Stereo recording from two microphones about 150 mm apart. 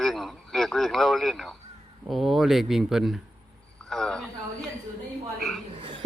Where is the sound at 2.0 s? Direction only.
Centre (ahead or behind).